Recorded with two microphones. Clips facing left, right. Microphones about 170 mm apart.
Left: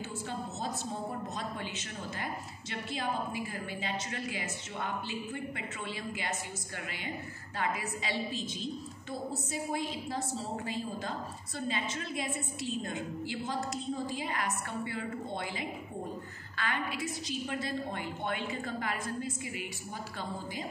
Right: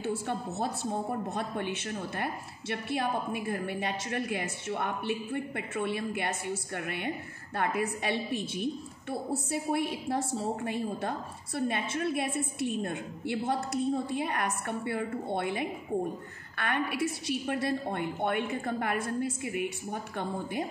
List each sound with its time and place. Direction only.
0.0 s a woman's voice: 60° right (ahead or behind)
7.5 s a woman's voice: 60° right (ahead or behind)